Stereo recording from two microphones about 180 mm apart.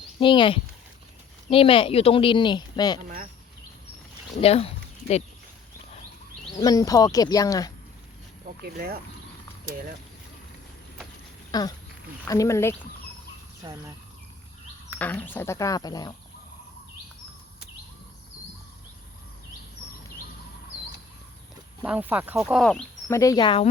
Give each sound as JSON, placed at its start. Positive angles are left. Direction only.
{"t": 0.2, "sound": "speech", "side_deg": 25}
{"t": 4.4, "sound": "speech", "side_deg": 35}
{"t": 6.6, "sound": "speech", "side_deg": 20}
{"t": 8.6, "sound": "speech", "side_deg": -60}
{"t": 11.5, "sound": "speech", "side_deg": 20}
{"t": 13.6, "sound": "speech", "side_deg": -25}
{"t": 14.9, "sound": "speech", "side_deg": 10}
{"t": 21.8, "sound": "speech", "side_deg": -10}
{"t": 23.0, "sound": "speech", "side_deg": 15}